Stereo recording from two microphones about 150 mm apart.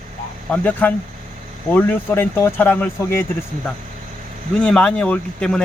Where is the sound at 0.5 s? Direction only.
10° left (ahead or behind).